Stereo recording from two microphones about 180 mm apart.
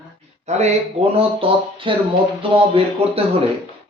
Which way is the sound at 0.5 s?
40° right (ahead or behind).